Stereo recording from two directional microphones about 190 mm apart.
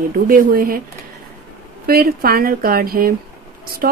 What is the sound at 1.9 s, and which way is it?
A woman's voice, 50° right (ahead or behind).